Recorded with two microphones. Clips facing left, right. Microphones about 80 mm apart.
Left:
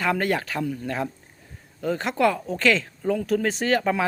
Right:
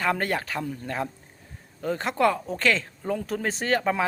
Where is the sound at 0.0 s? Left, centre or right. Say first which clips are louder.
Left 2 dB; right.